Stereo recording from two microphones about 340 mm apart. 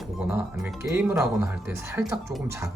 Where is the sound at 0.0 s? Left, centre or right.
Centre.